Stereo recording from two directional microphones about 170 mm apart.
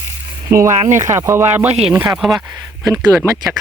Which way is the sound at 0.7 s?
45° right (ahead or behind).